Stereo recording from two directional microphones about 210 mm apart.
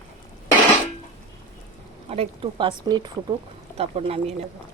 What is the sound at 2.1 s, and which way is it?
Speech, 25° right (ahead or behind).